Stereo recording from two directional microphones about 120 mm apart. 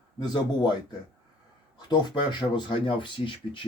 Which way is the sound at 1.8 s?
35° left (ahead or behind).